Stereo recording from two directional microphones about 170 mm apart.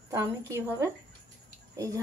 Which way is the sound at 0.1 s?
15° right (ahead or behind).